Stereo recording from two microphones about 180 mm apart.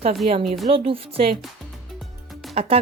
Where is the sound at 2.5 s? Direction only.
35° right (ahead or behind).